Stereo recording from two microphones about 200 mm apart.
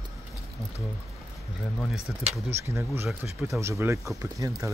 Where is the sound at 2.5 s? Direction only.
15° right (ahead or behind).